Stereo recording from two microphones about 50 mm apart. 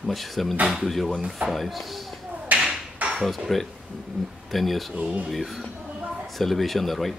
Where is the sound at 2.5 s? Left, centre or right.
Right.